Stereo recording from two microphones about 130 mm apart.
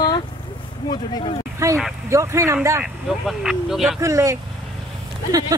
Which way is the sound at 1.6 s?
20° right (ahead or behind).